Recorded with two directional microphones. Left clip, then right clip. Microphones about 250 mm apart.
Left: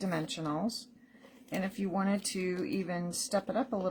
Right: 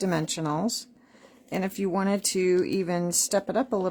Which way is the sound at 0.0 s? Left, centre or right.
Right.